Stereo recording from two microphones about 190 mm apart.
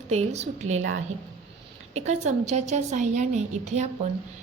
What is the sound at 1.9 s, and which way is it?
A woman's voice, 35° right (ahead or behind).